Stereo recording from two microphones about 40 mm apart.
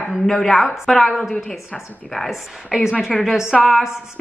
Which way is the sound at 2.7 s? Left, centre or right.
Centre.